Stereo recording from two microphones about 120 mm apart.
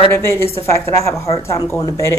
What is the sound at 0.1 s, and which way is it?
Speech, 20° left (ahead or behind).